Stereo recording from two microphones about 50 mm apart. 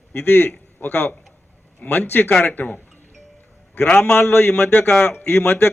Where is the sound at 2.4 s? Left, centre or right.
Left.